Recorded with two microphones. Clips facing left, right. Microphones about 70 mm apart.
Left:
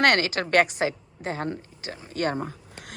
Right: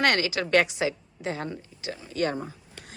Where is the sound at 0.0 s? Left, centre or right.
Left.